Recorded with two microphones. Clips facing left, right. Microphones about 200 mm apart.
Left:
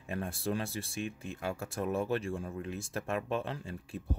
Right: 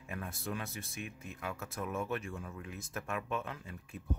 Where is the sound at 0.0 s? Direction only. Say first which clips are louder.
Left 6 dB; 30° left (ahead or behind).